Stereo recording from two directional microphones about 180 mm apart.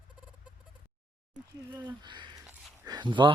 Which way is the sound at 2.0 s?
25° right (ahead or behind).